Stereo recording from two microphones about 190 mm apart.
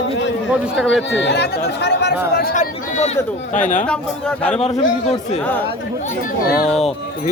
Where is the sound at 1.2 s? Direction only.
65° left (ahead or behind).